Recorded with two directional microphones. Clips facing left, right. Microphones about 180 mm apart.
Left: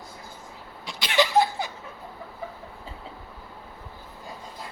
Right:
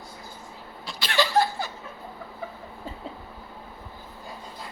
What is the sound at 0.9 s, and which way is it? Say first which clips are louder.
Laughter: left 2 dB; 20° left (ahead or behind).